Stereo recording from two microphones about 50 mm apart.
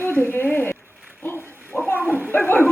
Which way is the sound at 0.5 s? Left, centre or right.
Left.